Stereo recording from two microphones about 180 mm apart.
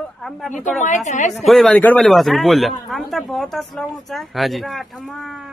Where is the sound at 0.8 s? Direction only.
45° left (ahead or behind).